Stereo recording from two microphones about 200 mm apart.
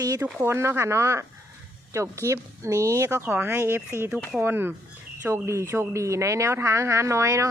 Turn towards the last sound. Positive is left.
turn(degrees=-15)  # may be behind; listen again after turning